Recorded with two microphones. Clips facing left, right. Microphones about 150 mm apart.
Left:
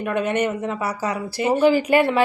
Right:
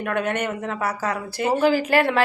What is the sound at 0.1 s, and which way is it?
Speech, 55° right (ahead or behind).